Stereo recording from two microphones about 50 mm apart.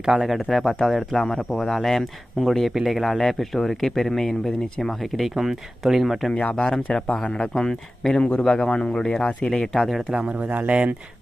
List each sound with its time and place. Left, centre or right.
0.0 s speech: centre
6.3 s speech: centre
6.9 s speech: centre
10.2 s speech: right